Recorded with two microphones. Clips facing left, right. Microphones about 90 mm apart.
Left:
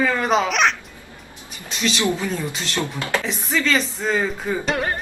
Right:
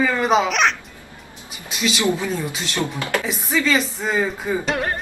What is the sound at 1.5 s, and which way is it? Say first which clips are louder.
Music: even; 10° right (ahead or behind).